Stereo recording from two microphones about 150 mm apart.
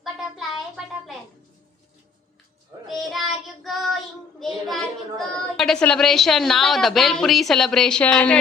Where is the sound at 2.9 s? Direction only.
Centre (ahead or behind).